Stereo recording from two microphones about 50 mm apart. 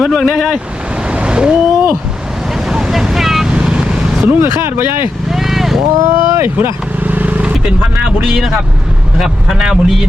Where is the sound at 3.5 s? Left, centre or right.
Centre.